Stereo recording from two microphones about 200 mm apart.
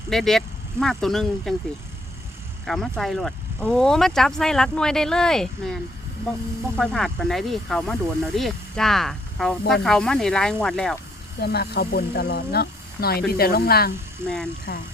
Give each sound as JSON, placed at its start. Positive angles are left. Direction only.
{"t": 0.1, "sound": "speech", "side_deg": 0}
{"t": 2.6, "sound": "speech", "side_deg": 0}
{"t": 11.3, "sound": "speech", "side_deg": 55}
{"t": 14.3, "sound": "speech", "side_deg": 5}